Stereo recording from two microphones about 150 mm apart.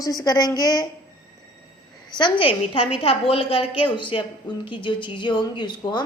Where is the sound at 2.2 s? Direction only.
35° left (ahead or behind).